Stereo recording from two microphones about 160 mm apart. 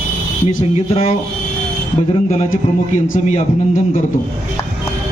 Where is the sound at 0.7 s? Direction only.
45° left (ahead or behind).